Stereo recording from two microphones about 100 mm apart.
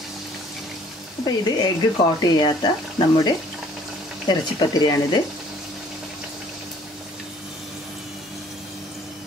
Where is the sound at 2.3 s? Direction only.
50° left (ahead or behind).